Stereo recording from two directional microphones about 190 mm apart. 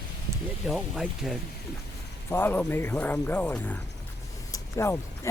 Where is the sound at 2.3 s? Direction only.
10° left (ahead or behind).